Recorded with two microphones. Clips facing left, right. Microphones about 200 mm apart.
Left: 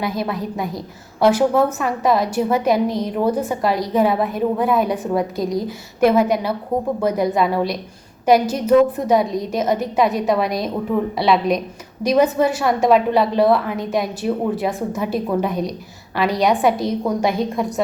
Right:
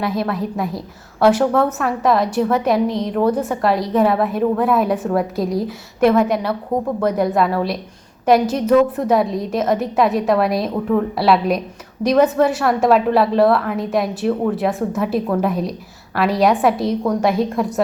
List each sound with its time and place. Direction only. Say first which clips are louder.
0.0 s a woman's voice: right 2 dB; centre (ahead or behind)